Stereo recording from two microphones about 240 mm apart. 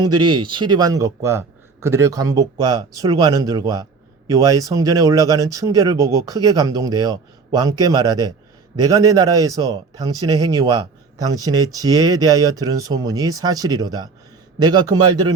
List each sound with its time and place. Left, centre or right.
0.0 s a man's voice: centre